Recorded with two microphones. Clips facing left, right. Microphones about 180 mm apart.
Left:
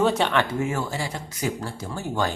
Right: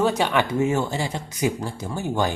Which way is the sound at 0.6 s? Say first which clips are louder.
Right 4 dB; 25° right (ahead or behind).